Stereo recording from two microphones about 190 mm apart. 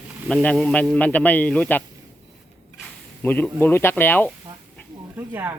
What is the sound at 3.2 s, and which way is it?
Speech, 10° left (ahead or behind).